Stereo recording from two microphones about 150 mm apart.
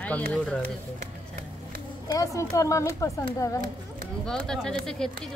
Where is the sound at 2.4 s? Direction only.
20° left (ahead or behind).